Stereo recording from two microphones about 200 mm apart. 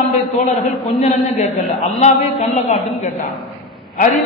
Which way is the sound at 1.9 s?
35° left (ahead or behind).